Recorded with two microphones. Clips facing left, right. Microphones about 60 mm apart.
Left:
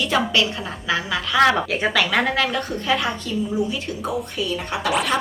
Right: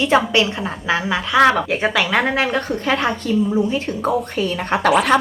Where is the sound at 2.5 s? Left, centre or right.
Right.